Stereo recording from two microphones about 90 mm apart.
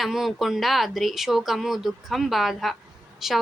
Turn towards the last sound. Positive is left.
turn(degrees=0)  # may be behind; listen again after turning